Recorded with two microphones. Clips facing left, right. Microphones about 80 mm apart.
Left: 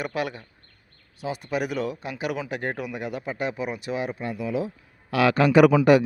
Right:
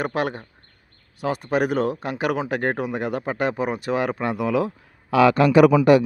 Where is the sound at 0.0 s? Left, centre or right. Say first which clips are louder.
Right 4 dB; right.